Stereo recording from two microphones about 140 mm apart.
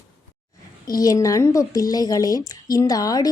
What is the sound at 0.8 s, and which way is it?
Speech, 25° left (ahead or behind).